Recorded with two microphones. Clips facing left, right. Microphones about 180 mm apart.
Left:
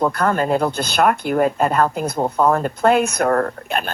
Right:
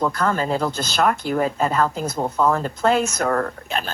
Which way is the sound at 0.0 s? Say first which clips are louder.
Left 3 dB; 55° left (ahead or behind).